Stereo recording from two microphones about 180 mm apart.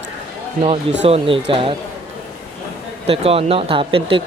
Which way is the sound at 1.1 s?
30° right (ahead or behind).